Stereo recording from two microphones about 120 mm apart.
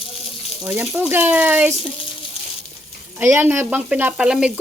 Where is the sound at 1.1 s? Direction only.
15° right (ahead or behind).